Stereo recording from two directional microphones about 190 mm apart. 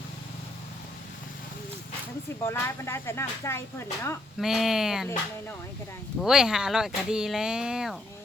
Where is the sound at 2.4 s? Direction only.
15° left (ahead or behind).